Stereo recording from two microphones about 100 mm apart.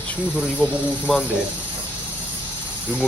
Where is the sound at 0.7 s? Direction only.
15° right (ahead or behind).